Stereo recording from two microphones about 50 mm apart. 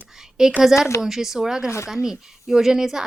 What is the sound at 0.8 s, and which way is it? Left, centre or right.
Speech, left.